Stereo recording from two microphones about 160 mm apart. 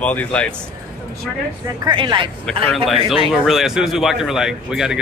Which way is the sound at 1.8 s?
30° right (ahead or behind).